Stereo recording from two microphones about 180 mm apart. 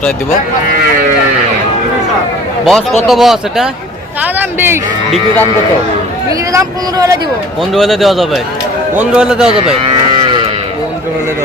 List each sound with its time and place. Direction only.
2.6 s a man's voice: centre (ahead or behind)
6.5 s speech: 20° right (ahead or behind)
7.7 s a man's voice: centre (ahead or behind)